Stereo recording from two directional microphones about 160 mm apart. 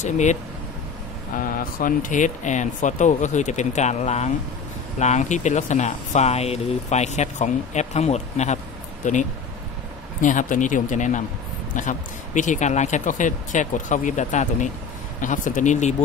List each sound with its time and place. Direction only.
0.0 s speech: 50° left (ahead or behind)
1.4 s speech: 60° left (ahead or behind)
10.2 s speech: 55° left (ahead or behind)